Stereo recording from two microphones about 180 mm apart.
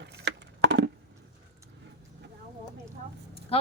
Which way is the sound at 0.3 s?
75° right (ahead or behind).